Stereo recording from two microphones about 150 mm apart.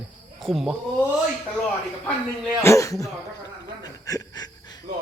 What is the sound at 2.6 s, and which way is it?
Speech, 20° left (ahead or behind).